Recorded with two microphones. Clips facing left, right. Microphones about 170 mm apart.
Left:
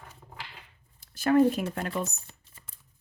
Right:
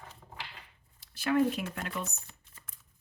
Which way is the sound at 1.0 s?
45° left (ahead or behind).